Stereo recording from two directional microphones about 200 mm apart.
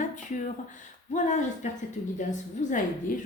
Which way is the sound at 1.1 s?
35° left (ahead or behind).